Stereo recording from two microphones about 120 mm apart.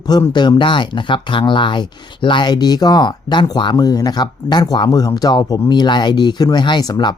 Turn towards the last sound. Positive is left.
turn(degrees=35)  # may be behind; listen again after turning